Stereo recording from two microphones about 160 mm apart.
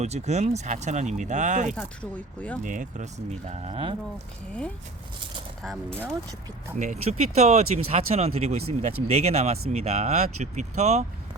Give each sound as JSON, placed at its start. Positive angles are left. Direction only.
{"t": 0.0, "sound": "speech", "side_deg": -45}
{"t": 1.7, "sound": "speech", "side_deg": 10}
{"t": 2.6, "sound": "speech", "side_deg": -50}
{"t": 6.7, "sound": "speech", "side_deg": -50}